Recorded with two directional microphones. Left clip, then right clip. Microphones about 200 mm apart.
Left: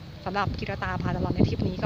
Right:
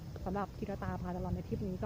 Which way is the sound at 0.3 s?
15° left (ahead or behind).